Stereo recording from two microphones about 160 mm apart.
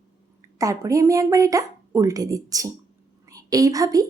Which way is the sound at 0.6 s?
20° right (ahead or behind).